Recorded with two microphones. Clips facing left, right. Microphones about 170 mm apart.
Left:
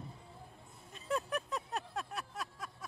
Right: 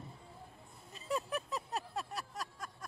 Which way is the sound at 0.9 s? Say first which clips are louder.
Left 1 dB; centre (ahead or behind).